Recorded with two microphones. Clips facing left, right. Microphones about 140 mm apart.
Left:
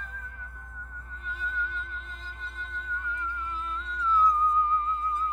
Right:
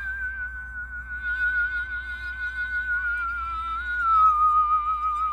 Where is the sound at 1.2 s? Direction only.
35° left (ahead or behind).